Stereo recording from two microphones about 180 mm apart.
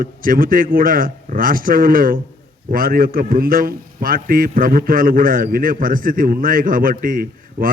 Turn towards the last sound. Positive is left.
turn(degrees=-50)  # may be behind; listen again after turning